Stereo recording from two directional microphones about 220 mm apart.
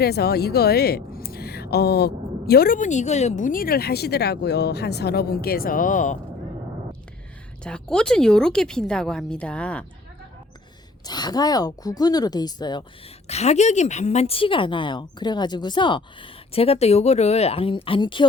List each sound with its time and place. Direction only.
0.0 s a woman's voice: 45° left (ahead or behind)
7.6 s a woman's voice: 5° left (ahead or behind)
11.0 s speech: 20° left (ahead or behind)
13.2 s a woman's voice: 30° left (ahead or behind)